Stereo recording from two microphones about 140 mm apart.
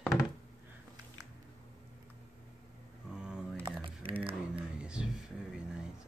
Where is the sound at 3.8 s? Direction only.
40° right (ahead or behind).